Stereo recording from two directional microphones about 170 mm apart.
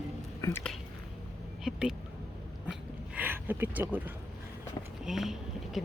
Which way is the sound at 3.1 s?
10° right (ahead or behind).